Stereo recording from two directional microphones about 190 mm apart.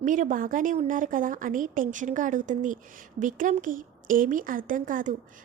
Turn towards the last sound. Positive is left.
turn(degrees=-45)  # may be behind; listen again after turning